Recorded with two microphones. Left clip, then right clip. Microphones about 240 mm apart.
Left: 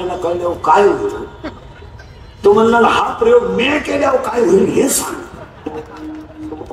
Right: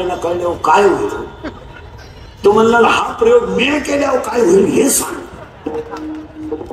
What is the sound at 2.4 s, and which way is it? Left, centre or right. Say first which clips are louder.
A man's voice: even; right.